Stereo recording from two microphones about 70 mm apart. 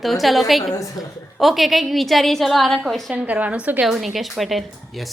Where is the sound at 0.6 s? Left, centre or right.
Left.